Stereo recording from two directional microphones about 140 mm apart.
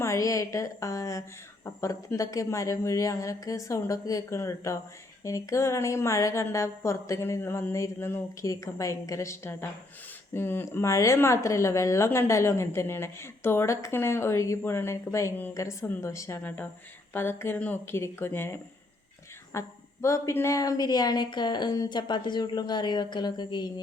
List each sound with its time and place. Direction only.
0.0 s speech: 20° left (ahead or behind)